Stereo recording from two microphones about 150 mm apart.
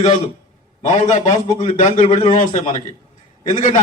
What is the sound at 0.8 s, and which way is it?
A man's voice, 50° left (ahead or behind).